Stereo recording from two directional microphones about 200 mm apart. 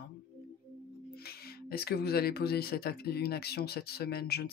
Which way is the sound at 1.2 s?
50° left (ahead or behind).